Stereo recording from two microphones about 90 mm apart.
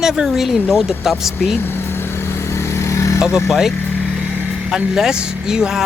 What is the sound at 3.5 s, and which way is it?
Speech, 5° right (ahead or behind).